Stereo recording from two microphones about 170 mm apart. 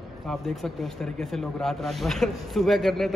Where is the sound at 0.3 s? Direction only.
Centre (ahead or behind).